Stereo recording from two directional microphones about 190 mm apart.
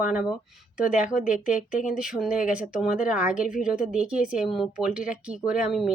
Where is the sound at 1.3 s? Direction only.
40° left (ahead or behind).